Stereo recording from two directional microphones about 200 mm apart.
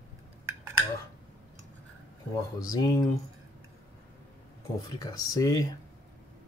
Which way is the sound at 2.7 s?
20° left (ahead or behind).